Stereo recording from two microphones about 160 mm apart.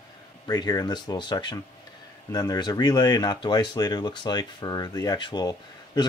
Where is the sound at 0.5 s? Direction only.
25° left (ahead or behind).